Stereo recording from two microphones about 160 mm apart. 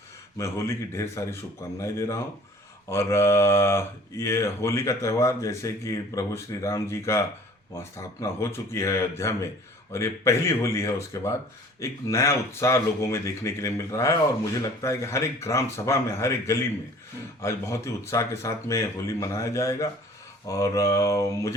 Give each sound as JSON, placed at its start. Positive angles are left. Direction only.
{"t": 0.3, "sound": "speech", "side_deg": 15}